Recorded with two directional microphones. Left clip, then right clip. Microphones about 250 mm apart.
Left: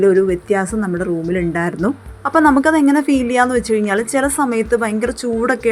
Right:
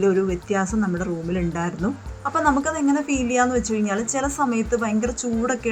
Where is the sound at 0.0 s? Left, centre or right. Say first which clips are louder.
Left 8 dB; centre.